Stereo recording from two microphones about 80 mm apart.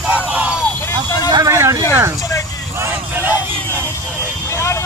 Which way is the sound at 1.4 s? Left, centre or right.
Right.